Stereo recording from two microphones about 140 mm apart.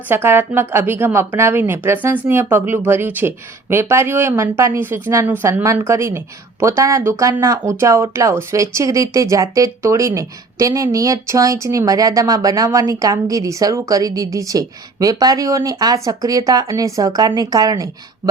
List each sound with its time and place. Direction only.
0.1 s speech: 15° right (ahead or behind)